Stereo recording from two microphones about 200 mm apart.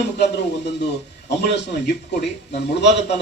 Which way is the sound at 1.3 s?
60° left (ahead or behind).